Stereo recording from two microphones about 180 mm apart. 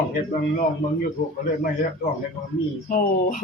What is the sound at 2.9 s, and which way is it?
Speech, 50° left (ahead or behind).